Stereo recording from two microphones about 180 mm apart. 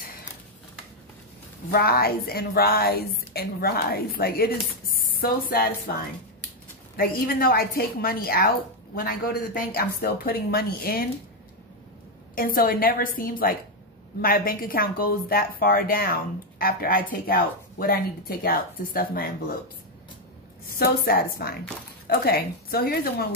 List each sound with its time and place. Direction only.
1.7 s speech: 60° left (ahead or behind)
7.0 s speech: 55° left (ahead or behind)
12.4 s a woman's voice: 55° left (ahead or behind)
20.7 s speech: 55° left (ahead or behind)